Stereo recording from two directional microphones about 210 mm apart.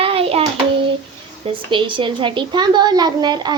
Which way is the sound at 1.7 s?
25° right (ahead or behind).